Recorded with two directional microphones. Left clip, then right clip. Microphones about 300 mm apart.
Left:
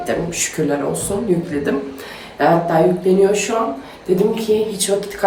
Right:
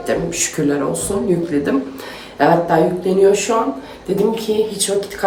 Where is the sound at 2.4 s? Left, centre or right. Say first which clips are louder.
Right 1 dB; centre.